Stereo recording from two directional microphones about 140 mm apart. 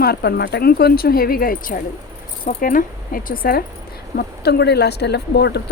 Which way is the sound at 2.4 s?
75° left (ahead or behind).